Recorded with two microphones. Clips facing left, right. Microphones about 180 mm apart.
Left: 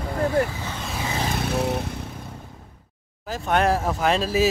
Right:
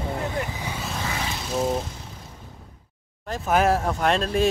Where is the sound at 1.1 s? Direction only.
50° left (ahead or behind).